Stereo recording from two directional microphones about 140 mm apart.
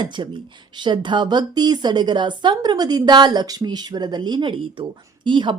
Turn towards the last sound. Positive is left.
turn(degrees=-35)  # may be behind; listen again after turning